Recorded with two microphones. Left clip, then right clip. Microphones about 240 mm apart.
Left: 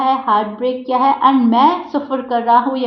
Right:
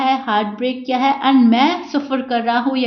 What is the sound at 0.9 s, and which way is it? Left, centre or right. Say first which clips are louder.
A woman's voice: left 3 dB; right.